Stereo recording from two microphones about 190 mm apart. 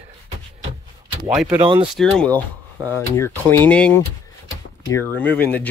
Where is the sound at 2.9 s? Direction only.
10° left (ahead or behind).